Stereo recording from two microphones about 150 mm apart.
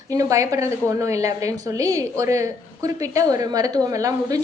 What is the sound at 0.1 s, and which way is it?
A woman's voice, 20° right (ahead or behind).